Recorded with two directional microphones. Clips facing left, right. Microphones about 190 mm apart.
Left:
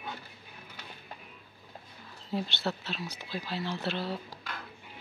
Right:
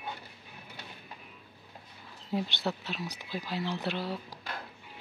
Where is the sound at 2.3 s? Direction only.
15° right (ahead or behind).